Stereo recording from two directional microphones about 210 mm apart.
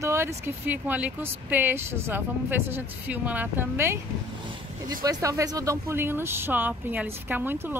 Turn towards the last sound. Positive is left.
turn(degrees=-10)  # may be behind; listen again after turning